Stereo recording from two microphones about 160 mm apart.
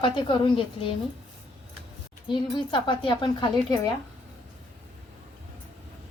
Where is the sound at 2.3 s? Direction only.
30° left (ahead or behind).